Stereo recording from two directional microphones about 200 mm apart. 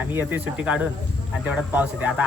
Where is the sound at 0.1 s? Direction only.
10° right (ahead or behind).